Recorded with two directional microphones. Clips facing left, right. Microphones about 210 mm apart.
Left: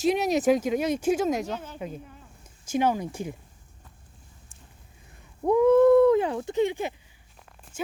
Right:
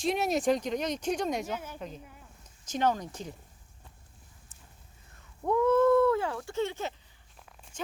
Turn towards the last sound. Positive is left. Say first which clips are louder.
# left 5 dB
turn(degrees=10)  # may be behind; listen again after turning